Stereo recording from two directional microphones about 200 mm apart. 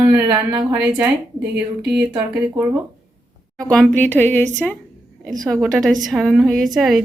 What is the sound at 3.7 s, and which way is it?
A woman's voice, 5° left (ahead or behind).